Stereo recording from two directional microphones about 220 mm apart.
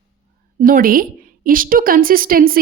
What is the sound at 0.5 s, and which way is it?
Speech, 40° right (ahead or behind).